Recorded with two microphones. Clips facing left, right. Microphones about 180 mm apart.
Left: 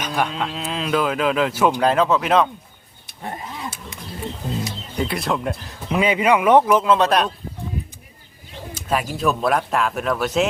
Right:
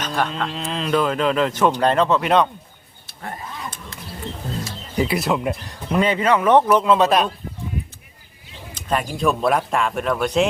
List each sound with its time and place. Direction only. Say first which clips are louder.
0.0 s speech: even; 10° left (ahead or behind)
3.1 s roaring cats: left 1 dB; 20° left (ahead or behind)
4.9 s speech: right 3 dB; 5° right (ahead or behind)
8.7 s speech: even; 5° left (ahead or behind)